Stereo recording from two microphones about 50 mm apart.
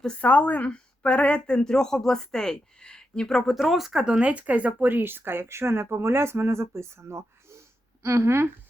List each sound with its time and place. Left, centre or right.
0.2 s a woman's voice: left; by 4.0 s centre
4.0 s speech: right